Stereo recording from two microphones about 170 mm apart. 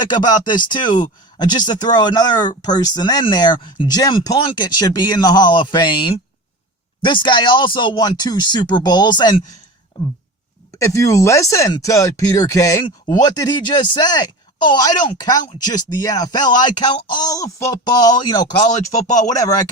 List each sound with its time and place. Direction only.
0.0 s speech: 25° left (ahead or behind)
10.8 s speech: 20° left (ahead or behind)